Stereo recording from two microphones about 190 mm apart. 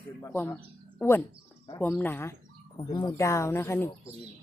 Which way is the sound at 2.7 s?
20° left (ahead or behind).